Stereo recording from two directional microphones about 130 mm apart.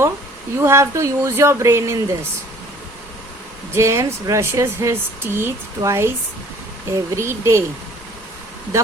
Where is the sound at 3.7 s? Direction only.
20° right (ahead or behind).